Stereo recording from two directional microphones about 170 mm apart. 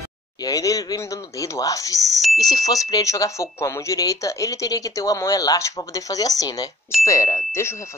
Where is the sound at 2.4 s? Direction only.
20° left (ahead or behind).